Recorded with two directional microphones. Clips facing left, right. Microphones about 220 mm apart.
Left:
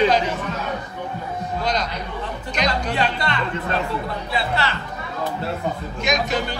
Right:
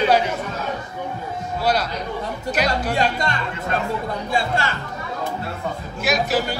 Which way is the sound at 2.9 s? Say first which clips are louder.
Right 1 dB; 45° right (ahead or behind).